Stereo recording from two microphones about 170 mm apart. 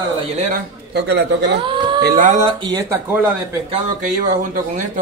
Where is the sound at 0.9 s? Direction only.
80° right.